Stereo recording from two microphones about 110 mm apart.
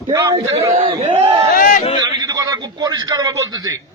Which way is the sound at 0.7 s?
60° right (ahead or behind).